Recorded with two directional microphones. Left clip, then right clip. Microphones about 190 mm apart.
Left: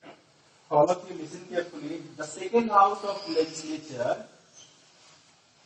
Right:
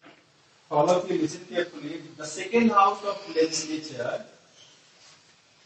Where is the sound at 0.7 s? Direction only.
15° right (ahead or behind).